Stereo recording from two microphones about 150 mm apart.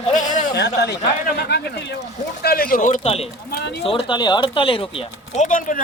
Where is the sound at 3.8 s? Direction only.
35° left (ahead or behind).